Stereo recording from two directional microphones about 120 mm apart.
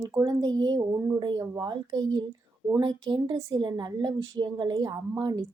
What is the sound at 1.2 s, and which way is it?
A woman's voice, 35° right (ahead or behind).